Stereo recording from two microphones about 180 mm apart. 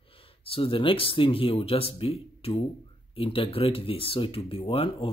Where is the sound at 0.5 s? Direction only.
30° left (ahead or behind).